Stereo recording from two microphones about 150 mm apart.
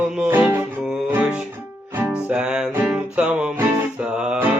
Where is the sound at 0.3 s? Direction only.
15° right (ahead or behind).